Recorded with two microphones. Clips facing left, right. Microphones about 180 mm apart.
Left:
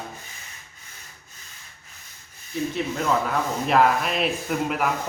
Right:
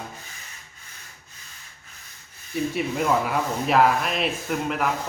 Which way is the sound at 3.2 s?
Centre (ahead or behind).